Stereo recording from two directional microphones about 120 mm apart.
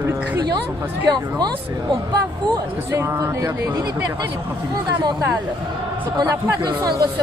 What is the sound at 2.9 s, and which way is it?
Speech, 25° right (ahead or behind).